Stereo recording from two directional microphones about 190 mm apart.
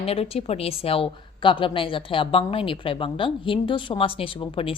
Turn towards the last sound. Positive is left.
turn(degrees=30)  # may be behind; listen again after turning